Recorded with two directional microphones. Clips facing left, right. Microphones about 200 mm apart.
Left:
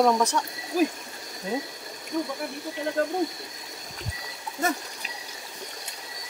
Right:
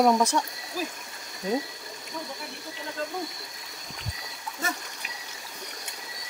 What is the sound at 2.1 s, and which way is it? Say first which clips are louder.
Speech: left 10 dB; 45° left (ahead or behind).